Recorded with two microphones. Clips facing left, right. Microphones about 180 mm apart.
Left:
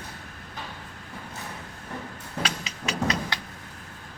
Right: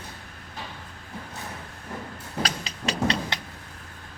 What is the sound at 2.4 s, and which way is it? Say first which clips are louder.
Music: right 1 dB; 35° right (ahead or behind).